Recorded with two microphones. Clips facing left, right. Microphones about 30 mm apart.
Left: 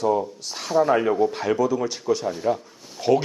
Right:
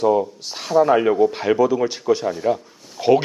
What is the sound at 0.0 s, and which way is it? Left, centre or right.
Speech, centre.